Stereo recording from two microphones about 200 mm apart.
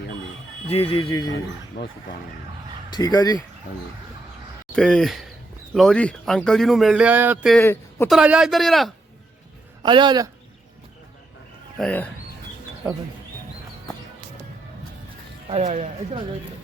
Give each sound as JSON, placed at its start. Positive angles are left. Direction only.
{"t": 0.7, "sound": "speech", "side_deg": 25}
{"t": 1.8, "sound": "speech", "side_deg": 55}
{"t": 2.9, "sound": "speech", "side_deg": 20}
{"t": 4.7, "sound": "speech", "side_deg": 5}
{"t": 7.6, "sound": "a man's voice", "side_deg": 10}
{"t": 8.0, "sound": "speech", "side_deg": -5}
{"t": 9.8, "sound": "speech", "side_deg": -25}
{"t": 11.8, "sound": "speech", "side_deg": 5}
{"t": 15.4, "sound": "speech", "side_deg": -35}